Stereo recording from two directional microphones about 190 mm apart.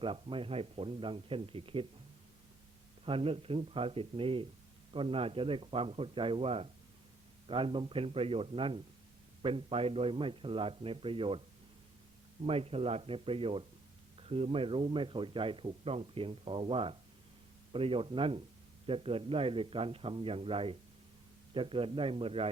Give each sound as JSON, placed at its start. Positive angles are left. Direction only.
{"t": 0.0, "sound": "speech", "side_deg": -25}
{"t": 3.1, "sound": "speech", "side_deg": -30}
{"t": 12.5, "sound": "speech", "side_deg": -30}